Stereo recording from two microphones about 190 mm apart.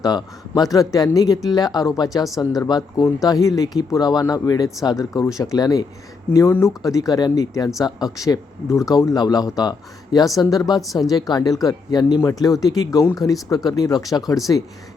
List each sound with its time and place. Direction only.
0.0 s speech: 20° left (ahead or behind)